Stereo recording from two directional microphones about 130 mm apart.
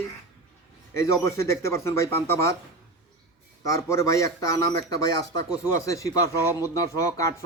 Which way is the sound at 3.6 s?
25° left (ahead or behind).